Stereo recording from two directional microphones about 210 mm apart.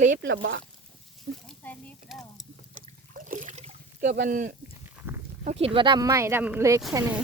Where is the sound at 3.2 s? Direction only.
40° right (ahead or behind).